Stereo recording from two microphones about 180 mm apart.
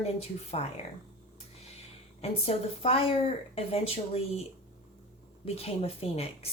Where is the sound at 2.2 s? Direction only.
35° left (ahead or behind).